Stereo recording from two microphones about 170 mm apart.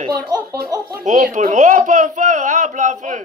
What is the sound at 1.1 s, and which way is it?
Speech, 45° right (ahead or behind).